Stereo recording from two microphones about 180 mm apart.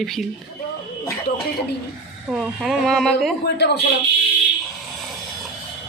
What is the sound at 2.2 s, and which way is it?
Speech, centre (ahead or behind).